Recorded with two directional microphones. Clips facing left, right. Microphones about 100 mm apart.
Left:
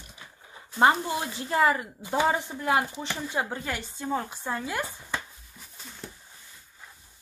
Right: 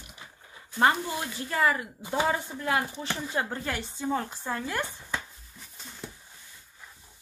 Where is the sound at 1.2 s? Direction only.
25° left (ahead or behind).